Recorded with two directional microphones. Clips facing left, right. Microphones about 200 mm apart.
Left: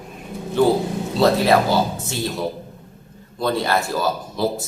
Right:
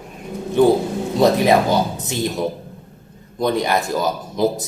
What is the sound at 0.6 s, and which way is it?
A man's voice, 20° right (ahead or behind).